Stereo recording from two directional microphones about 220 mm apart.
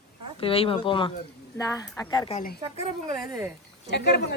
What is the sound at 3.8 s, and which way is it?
Speech, 50° left (ahead or behind).